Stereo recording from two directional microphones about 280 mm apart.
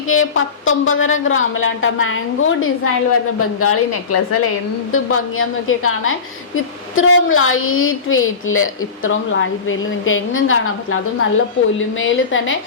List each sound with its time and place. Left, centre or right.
0.1 s a woman's voice: left
4.9 s a woman's voice: left